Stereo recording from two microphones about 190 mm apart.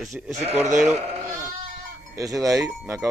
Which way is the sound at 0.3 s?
35° right (ahead or behind).